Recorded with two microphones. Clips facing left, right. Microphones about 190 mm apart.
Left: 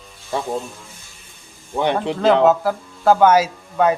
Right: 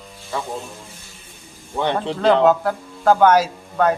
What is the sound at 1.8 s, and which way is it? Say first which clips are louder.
Speech: left 2 dB; 15° left (ahead or behind).